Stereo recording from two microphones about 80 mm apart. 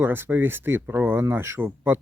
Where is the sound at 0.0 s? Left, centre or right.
Right.